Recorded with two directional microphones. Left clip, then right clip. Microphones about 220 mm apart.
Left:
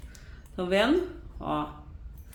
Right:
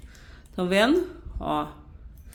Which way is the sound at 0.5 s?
45° right (ahead or behind).